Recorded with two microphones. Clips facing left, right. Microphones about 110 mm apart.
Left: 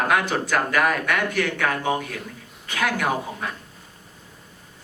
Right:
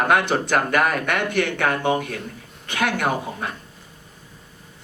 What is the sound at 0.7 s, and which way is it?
Speech, 55° right (ahead or behind).